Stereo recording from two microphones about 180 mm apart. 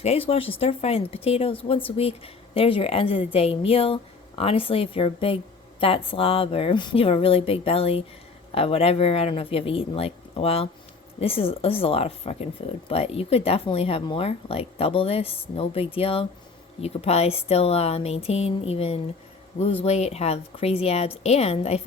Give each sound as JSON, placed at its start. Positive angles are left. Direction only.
{"t": 0.0, "sound": "speech", "side_deg": 35}